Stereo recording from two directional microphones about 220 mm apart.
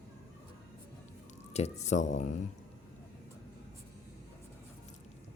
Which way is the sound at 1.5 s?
30° left (ahead or behind).